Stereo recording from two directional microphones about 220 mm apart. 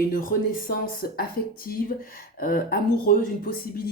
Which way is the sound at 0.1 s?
40° left (ahead or behind).